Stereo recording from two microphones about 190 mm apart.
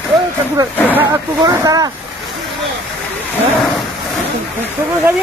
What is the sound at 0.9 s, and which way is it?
Speech, 10° right (ahead or behind).